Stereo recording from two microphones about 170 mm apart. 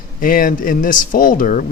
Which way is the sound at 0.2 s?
55° left (ahead or behind).